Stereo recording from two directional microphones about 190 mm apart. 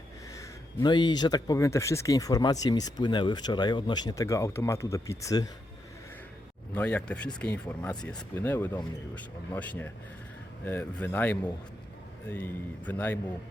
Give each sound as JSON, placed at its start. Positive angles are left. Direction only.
{"t": 0.3, "sound": "speech", "side_deg": 25}
{"t": 6.7, "sound": "speech", "side_deg": 10}